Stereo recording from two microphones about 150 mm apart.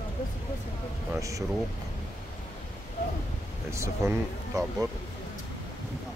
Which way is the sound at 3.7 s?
20° right (ahead or behind).